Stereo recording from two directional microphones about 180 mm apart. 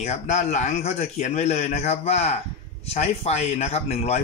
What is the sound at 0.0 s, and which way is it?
Speech, 40° left (ahead or behind).